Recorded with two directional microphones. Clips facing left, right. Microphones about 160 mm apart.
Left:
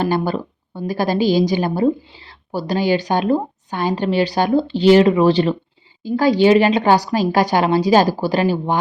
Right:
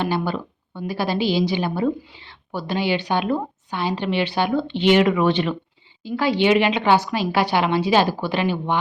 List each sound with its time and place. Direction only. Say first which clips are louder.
0.0 s a woman's voice: left 4 dB; 40° left (ahead or behind)